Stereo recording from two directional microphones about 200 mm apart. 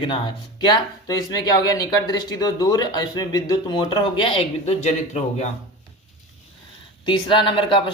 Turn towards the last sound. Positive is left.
turn(degrees=25)  # may be behind; listen again after turning